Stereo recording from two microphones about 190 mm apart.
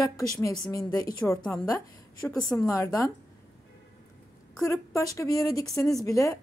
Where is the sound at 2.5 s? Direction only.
15° left (ahead or behind).